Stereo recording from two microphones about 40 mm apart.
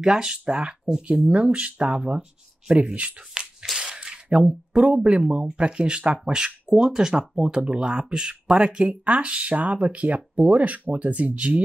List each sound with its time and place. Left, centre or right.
0.0 s speech: centre; by 3.3 s right
3.7 s a sound: centre
4.7 s speech: right